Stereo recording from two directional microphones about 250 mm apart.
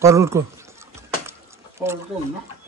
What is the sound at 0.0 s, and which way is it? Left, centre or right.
Speech, centre.